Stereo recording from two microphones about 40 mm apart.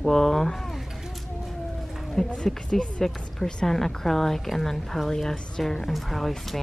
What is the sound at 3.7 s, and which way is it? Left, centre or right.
A woman's voice, centre.